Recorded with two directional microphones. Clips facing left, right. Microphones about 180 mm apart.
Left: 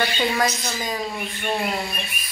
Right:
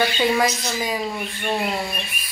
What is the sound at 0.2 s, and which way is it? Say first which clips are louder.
Speech: right 3 dB; 10° right (ahead or behind).